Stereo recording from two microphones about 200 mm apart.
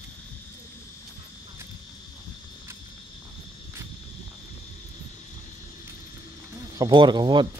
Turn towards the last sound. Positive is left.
turn(degrees=-20)  # may be behind; listen again after turning